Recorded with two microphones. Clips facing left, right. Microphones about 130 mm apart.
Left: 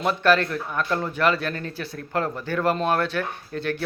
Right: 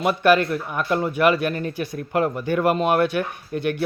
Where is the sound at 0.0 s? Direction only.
10° right (ahead or behind).